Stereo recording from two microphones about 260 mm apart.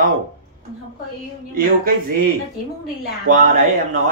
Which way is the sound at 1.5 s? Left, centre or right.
Right.